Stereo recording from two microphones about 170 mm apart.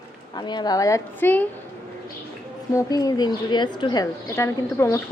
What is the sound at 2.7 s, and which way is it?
A woman's voice, 20° left (ahead or behind).